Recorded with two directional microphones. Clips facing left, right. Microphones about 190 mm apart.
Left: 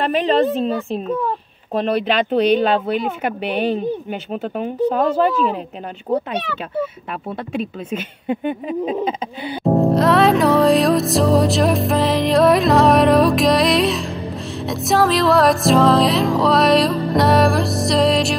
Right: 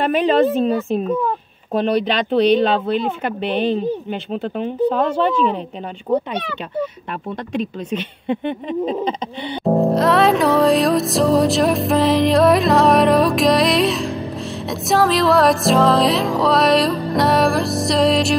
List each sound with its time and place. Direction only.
0.0 s music: centre (ahead or behind)
7.5 s speech: 5° left (ahead or behind)
9.8 s music: centre (ahead or behind)